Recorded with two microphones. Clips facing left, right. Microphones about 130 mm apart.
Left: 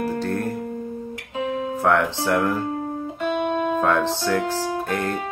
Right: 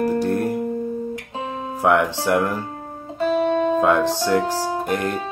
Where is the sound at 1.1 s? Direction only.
35° right (ahead or behind).